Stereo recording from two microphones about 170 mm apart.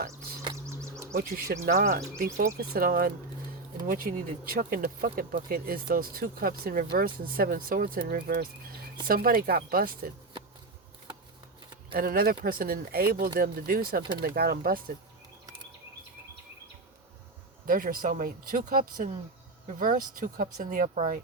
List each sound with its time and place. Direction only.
0.1 s bird: 15° right (ahead or behind)
0.7 s a sound: 15° right (ahead or behind)
1.1 s speech: 60° right (ahead or behind)
11.9 s speech: 60° right (ahead or behind)
17.7 s speech: 55° right (ahead or behind)